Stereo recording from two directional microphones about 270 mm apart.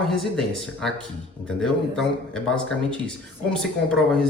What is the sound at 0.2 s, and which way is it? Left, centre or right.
A man's voice, centre.